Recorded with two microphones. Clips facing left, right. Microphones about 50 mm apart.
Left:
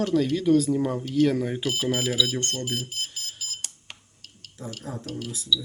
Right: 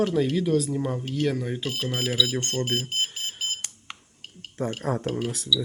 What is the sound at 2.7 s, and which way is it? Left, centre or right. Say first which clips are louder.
Speech: right 4 dB; right.